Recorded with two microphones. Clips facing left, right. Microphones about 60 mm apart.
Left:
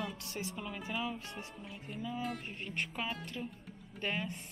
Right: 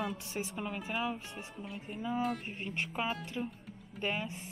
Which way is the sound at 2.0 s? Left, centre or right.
Right.